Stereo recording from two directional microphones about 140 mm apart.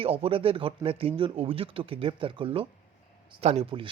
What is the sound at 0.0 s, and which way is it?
Speech, 40° right (ahead or behind).